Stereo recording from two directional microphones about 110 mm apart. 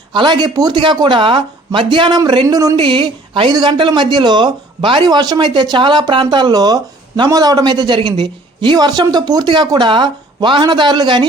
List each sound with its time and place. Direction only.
0.1 s speech: 45° right (ahead or behind)
2.7 s speech: 50° right (ahead or behind)